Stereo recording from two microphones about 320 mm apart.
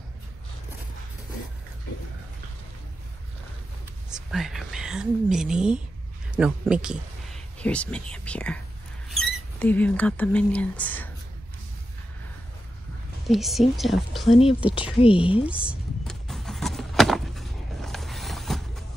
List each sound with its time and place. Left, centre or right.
4.3 s speech: centre
13.3 s speech: centre
15.0 s speech: centre
15.4 s a sound: centre